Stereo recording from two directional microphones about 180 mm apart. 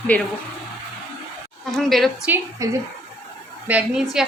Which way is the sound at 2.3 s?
15° right (ahead or behind).